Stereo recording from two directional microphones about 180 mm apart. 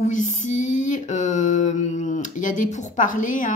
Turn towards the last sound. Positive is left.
turn(degrees=45)  # may be behind; listen again after turning